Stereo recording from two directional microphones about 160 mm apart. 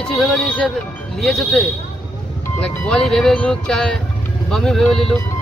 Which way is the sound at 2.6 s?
5° left (ahead or behind).